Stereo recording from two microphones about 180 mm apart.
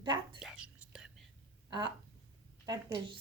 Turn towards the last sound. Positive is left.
turn(degrees=-25)  # may be behind; listen again after turning